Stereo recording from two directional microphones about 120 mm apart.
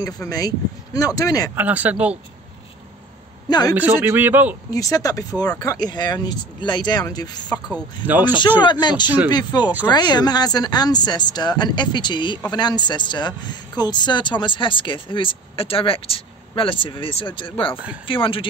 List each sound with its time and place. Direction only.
0.0 s speech: 30° left (ahead or behind)
1.5 s a man's voice: 15° right (ahead or behind)
3.4 s a man's voice: 35° left (ahead or behind)
3.7 s a man's voice: 15° right (ahead or behind)
4.7 s speech: 30° left (ahead or behind)
8.1 s a man's voice: 15° right (ahead or behind)
8.6 s speech: 35° left (ahead or behind)